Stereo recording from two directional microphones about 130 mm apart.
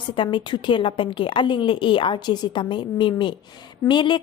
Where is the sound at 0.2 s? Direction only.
40° left (ahead or behind).